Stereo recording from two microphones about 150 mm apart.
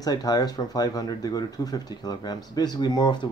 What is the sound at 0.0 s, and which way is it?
Speech, 25° left (ahead or behind).